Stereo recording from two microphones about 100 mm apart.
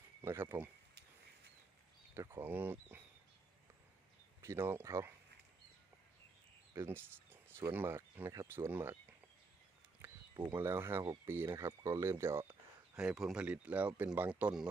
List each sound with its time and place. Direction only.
0.3 s speech: 25° right (ahead or behind)
2.1 s speech: 25° right (ahead or behind)
4.4 s speech: 25° right (ahead or behind)
6.7 s speech: 20° right (ahead or behind)
10.0 s a sound: 20° right (ahead or behind)
10.5 s speech: 25° right (ahead or behind)
13.0 s speech: 5° right (ahead or behind)